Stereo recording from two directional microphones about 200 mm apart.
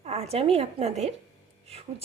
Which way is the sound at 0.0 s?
30° right (ahead or behind).